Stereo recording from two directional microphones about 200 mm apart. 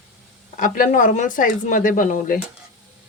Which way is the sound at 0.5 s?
40° left (ahead or behind).